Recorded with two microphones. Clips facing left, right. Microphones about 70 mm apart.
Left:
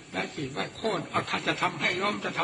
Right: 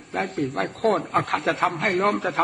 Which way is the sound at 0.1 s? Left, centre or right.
Right.